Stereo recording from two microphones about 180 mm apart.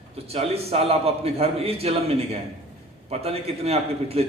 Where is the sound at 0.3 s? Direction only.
35° right (ahead or behind).